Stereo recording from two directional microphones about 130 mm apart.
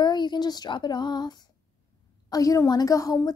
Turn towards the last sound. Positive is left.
turn(degrees=25)  # may be behind; listen again after turning